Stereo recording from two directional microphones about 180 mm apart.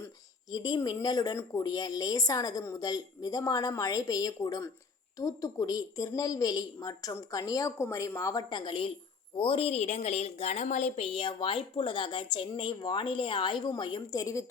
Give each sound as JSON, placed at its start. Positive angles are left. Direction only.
{"t": 0.5, "sound": "a woman's voice", "side_deg": 20}